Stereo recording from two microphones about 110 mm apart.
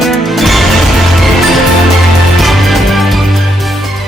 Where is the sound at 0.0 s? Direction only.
Centre (ahead or behind).